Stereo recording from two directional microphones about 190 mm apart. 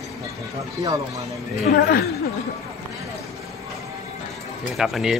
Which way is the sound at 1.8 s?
55° left (ahead or behind).